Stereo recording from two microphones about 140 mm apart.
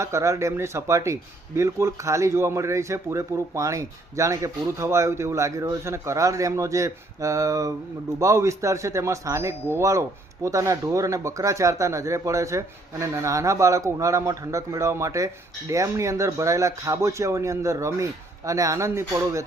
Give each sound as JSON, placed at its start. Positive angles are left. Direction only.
{"t": 0.0, "sound": "speech", "side_deg": -20}